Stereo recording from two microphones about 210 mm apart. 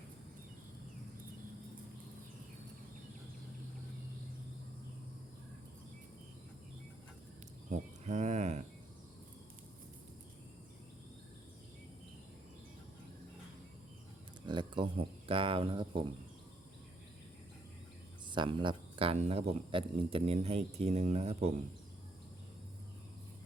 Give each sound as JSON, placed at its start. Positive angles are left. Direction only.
{"t": 7.7, "sound": "livestock", "side_deg": -35}
{"t": 14.4, "sound": "speech", "side_deg": -20}
{"t": 18.3, "sound": "speech", "side_deg": -20}